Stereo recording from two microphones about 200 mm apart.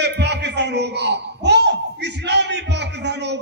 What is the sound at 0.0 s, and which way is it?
A man's voice, 55° right (ahead or behind).